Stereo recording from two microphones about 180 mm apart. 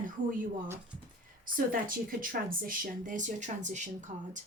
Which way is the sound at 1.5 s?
50° right (ahead or behind).